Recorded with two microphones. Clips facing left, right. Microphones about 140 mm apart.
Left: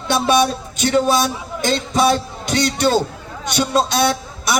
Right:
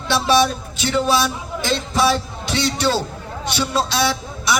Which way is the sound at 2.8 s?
20° left (ahead or behind).